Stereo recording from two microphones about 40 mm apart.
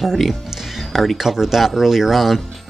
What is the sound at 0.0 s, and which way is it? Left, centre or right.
Speech, centre.